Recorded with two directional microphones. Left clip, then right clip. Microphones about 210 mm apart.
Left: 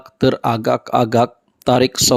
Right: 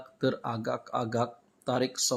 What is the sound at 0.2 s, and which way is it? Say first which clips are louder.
Speech: left 14 dB; 40° left (ahead or behind).